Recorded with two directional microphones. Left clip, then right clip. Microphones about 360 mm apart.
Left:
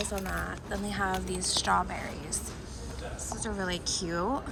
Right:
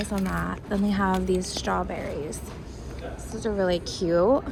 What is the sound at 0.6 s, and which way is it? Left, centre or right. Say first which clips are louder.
Speech: right 7 dB; right.